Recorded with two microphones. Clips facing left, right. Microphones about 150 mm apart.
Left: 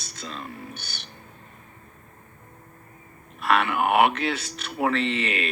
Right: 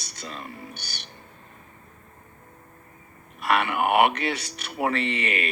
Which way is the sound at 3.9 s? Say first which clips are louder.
Even; 60° right (ahead or behind).